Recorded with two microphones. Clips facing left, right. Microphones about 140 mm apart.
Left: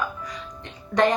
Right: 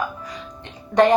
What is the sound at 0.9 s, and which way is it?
Speech, 35° right (ahead or behind).